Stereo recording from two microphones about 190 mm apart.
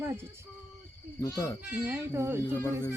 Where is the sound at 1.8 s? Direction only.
10° right (ahead or behind).